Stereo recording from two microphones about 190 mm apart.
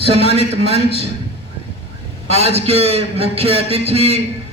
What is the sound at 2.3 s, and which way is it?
A man's voice, 35° right (ahead or behind).